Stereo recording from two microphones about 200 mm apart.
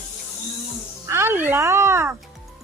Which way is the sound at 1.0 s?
15° right (ahead or behind).